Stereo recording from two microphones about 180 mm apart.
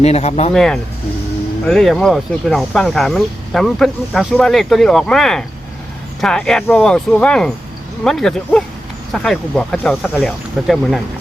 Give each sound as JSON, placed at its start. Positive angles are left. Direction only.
{"t": 0.0, "sound": "speech", "side_deg": 35}
{"t": 0.5, "sound": "speech", "side_deg": 5}